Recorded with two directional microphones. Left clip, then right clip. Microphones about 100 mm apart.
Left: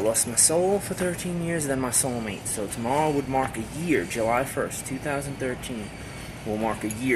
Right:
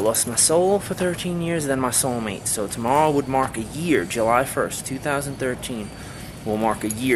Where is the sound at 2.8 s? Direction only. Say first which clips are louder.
Right 6 dB; 15° right (ahead or behind).